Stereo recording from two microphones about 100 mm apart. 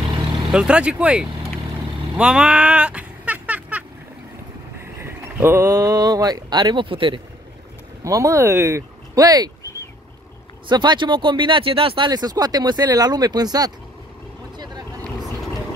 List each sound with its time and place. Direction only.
0.5 s speech: 10° right (ahead or behind)
2.1 s a sound: 10° right (ahead or behind)
5.0 s speech: 25° right (ahead or behind); by 7.2 s 60° right (ahead or behind)
8.0 s speech: 35° right (ahead or behind)
10.7 s speech: 50° right (ahead or behind)
12.1 s speech: 40° right (ahead or behind)
14.6 s vehicle: 35° right (ahead or behind)